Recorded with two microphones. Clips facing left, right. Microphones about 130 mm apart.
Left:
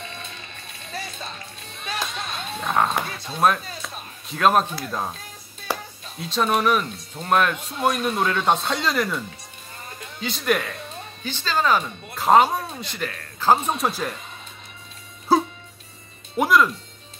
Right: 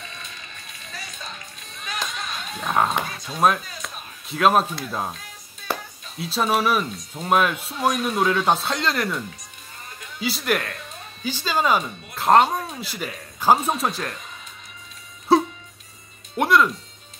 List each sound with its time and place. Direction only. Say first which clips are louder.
0.9 s music: left 4 dB; 35° left (ahead or behind)
2.6 s speech: even; centre (ahead or behind)
10.2 s speech: left 1 dB; 5° right (ahead or behind)
12.2 s speech: even; 5° left (ahead or behind)
15.3 s music: right 2 dB; centre (ahead or behind)
16.3 s speech: even; centre (ahead or behind)